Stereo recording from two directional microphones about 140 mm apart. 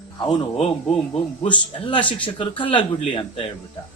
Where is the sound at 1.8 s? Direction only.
35° left (ahead or behind).